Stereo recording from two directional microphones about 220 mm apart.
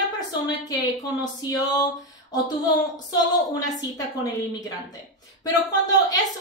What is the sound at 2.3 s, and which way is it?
A woman's voice, 15° left (ahead or behind).